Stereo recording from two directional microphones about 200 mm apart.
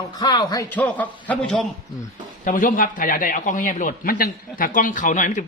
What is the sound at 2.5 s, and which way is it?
A man's voice, 40° left (ahead or behind).